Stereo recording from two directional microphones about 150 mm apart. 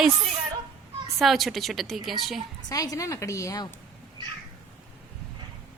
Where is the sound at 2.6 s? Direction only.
25° left (ahead or behind).